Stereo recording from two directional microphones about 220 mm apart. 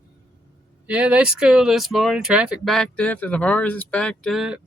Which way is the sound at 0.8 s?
5° right (ahead or behind).